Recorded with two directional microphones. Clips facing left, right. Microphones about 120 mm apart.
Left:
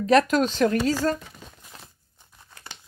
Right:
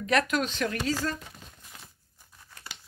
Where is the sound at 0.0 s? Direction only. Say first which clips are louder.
Left 7 dB; 35° left (ahead or behind).